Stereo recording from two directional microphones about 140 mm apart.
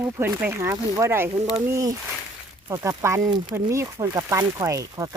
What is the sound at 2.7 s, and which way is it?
Speech, 20° right (ahead or behind).